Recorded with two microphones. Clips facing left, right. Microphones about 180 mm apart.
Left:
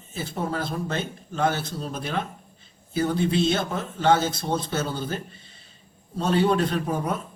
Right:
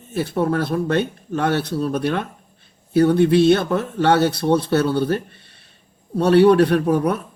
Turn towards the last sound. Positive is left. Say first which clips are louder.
# right 9 dB
turn(degrees=-70)  # may be behind; listen again after turning